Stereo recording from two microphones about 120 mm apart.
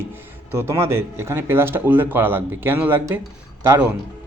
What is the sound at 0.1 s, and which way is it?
Speech, 20° right (ahead or behind).